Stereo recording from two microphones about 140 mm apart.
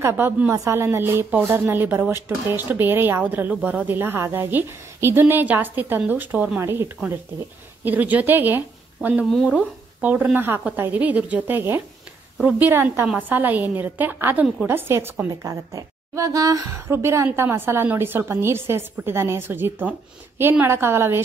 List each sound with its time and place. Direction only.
0.0 s a woman's voice: 15° right (ahead or behind)